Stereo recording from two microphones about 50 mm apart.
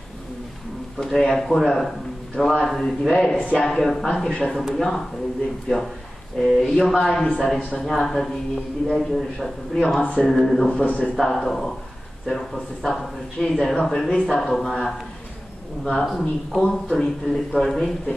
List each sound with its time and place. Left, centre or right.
0.9 s a man's voice: centre
2.4 s speech: left
2.7 s a man's voice: centre
15.8 s a man's voice: centre